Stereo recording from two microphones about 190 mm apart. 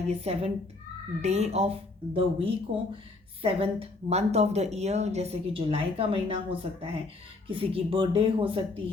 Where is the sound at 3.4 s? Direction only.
30° right (ahead or behind).